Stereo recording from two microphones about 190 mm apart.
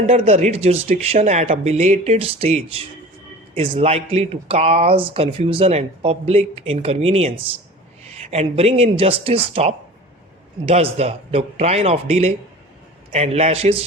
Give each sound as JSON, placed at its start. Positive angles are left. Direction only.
{"t": 0.0, "sound": "speech", "side_deg": -35}